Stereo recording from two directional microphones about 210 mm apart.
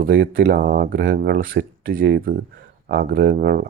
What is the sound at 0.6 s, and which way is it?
Speech, 45° right (ahead or behind).